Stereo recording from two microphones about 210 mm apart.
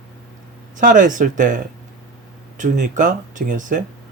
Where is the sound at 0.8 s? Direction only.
40° right (ahead or behind).